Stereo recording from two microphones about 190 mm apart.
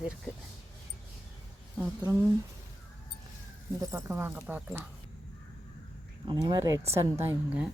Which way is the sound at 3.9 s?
15° right (ahead or behind).